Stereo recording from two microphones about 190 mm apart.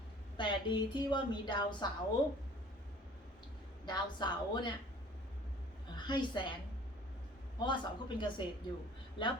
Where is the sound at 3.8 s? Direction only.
25° left (ahead or behind).